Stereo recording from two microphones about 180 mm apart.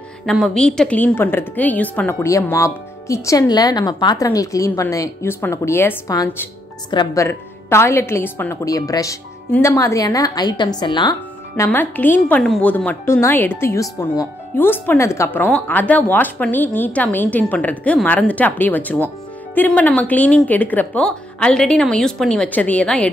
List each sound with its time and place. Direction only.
0.3 s a woman's voice: 5° left (ahead or behind); by 7.2 s 25° left (ahead or behind)
7.2 s a woman's voice: 15° left (ahead or behind)